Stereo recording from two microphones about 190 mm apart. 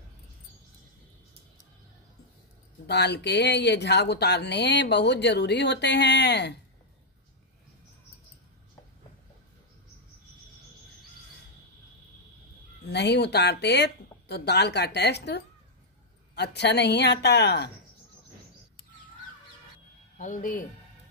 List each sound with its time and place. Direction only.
2.9 s speech: 65° left (ahead or behind)
12.9 s speech: 65° left (ahead or behind)
20.2 s speech: 40° left (ahead or behind)